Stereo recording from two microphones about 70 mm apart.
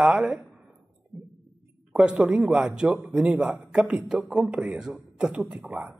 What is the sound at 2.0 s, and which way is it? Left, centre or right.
Speech, centre.